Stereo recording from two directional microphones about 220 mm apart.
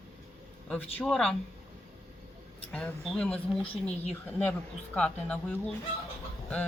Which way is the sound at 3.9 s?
30° left (ahead or behind).